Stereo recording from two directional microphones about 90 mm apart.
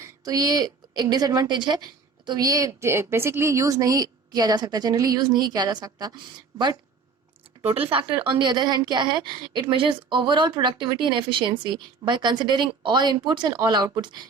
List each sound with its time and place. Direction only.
0.0 s a woman's voice: 45° right (ahead or behind)
7.7 s a woman's voice: 80° right; by 14.3 s 55° right (ahead or behind)